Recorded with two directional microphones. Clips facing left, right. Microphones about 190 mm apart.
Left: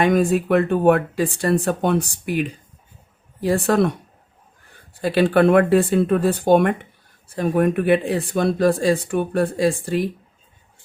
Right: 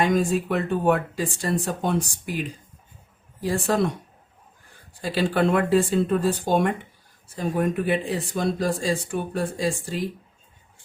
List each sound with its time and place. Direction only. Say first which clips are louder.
0.0 s speech: left 4 dB; 60° left (ahead or behind)
4.9 s speech: left 6 dB; 60° left (ahead or behind)